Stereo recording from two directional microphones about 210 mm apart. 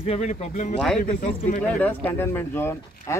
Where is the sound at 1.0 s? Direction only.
45° left (ahead or behind).